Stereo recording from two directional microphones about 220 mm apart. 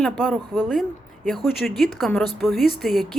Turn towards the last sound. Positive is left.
turn(degrees=0)  # may be behind; listen again after turning